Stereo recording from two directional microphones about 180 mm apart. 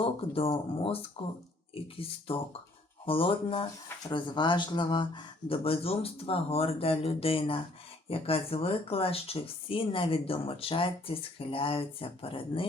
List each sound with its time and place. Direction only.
0.0 s speech: 30° left (ahead or behind)